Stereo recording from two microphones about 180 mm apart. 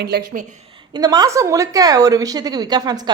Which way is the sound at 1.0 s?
20° right (ahead or behind).